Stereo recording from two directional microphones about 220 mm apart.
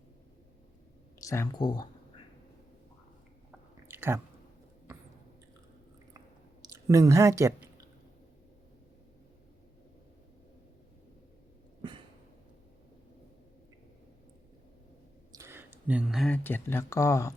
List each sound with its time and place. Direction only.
1.2 s speech: 15° left (ahead or behind)
3.8 s chewing: 10° right (ahead or behind)
6.6 s speech: 15° right (ahead or behind)
11.8 s a sound: 20° right (ahead or behind)
15.3 s speech: 10° right (ahead or behind); by 17.3 s 15° left (ahead or behind)